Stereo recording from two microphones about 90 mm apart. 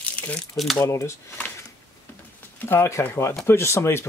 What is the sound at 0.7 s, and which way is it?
Speech, 30° left (ahead or behind).